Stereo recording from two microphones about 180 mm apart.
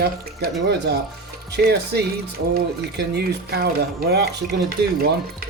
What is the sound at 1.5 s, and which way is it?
Speech, 65° right (ahead or behind).